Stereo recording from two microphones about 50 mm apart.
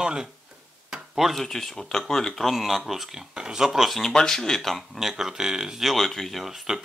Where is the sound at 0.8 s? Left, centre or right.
Centre.